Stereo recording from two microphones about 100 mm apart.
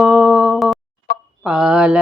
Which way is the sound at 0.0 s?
5° right (ahead or behind).